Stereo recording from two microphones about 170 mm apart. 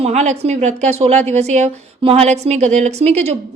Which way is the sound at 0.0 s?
40° right (ahead or behind).